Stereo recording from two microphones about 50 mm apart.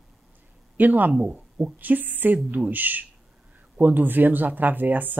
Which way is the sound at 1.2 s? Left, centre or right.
Right.